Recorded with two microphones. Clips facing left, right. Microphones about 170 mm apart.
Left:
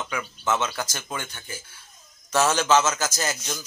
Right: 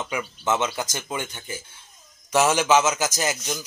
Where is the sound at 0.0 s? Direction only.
20° right (ahead or behind).